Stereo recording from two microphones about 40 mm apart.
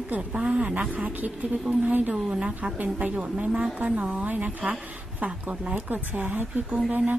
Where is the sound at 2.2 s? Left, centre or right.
Right.